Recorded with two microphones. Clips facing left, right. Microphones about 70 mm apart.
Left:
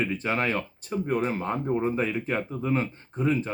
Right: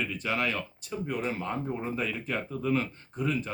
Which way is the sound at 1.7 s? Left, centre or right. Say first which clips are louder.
Left 6 dB; left.